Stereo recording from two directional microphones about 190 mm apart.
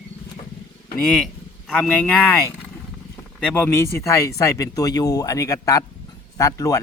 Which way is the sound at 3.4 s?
10° left (ahead or behind).